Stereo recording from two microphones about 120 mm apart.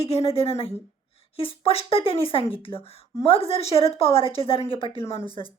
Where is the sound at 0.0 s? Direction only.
55° left (ahead or behind).